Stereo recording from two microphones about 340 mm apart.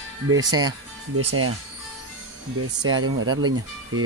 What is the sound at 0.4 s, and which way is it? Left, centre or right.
Speech, centre.